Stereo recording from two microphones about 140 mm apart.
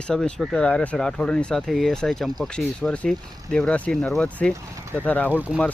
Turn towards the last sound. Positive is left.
turn(degrees=-10)  # may be behind; listen again after turning